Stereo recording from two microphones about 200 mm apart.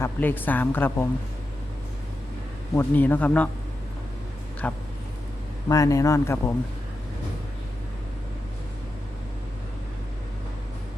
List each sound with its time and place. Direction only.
0.0 s a woman's voice: 10° left (ahead or behind)
2.7 s a woman's voice: 10° left (ahead or behind)
4.6 s a woman's voice: 5° left (ahead or behind)